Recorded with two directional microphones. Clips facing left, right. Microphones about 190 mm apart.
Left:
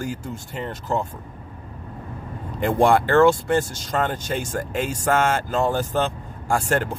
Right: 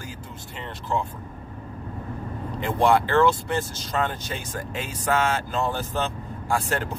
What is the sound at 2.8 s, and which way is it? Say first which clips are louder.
Speech: left 3 dB; 50° left (ahead or behind).